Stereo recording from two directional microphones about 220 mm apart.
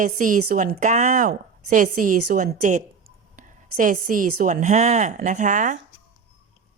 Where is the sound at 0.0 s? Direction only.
35° right (ahead or behind).